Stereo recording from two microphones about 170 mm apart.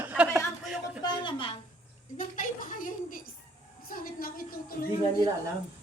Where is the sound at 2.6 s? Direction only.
55° left (ahead or behind).